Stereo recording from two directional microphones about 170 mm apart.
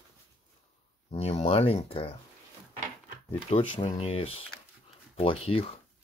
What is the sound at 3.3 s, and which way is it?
Speech, 35° left (ahead or behind).